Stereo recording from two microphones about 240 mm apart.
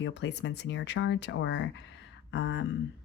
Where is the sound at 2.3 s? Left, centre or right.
Left.